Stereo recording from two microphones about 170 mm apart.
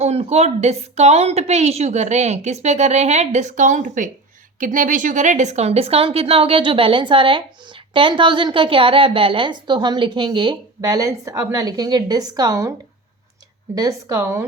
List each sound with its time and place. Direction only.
0.0 s a woman's voice: 40° right (ahead or behind); by 12.7 s 20° right (ahead or behind)
13.7 s speech: 20° right (ahead or behind)